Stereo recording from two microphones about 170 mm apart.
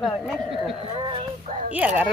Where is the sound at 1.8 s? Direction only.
10° right (ahead or behind).